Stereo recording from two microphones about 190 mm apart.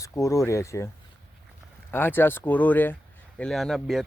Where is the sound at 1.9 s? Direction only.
10° left (ahead or behind).